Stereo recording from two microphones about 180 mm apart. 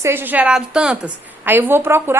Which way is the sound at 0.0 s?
10° right (ahead or behind).